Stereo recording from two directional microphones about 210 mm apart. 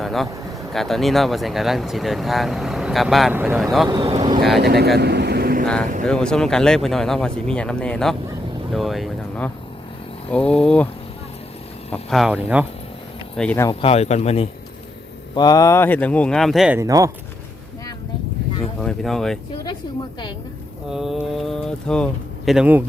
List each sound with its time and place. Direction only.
0.0 s a sound: centre (ahead or behind)
0.7 s speech: centre (ahead or behind)
3.8 s speech: 20° right (ahead or behind)
4.6 s speech: 50° right (ahead or behind)
4.9 s vehicle: 50° right (ahead or behind)
6.1 s speech: 5° left (ahead or behind)
12.1 s speech: 5° right (ahead or behind)
13.3 s speech: 5° left (ahead or behind)
13.7 s speech: 30° left (ahead or behind)
15.4 s speech: 15° left (ahead or behind); by 17.1 s 15° right (ahead or behind)
18.8 s speech: centre (ahead or behind)
20.9 s speech: centre (ahead or behind)